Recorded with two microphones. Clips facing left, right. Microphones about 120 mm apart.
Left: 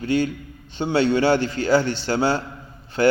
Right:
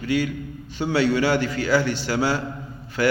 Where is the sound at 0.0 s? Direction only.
30° left (ahead or behind).